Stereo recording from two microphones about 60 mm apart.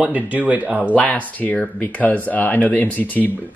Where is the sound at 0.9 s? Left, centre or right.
Left.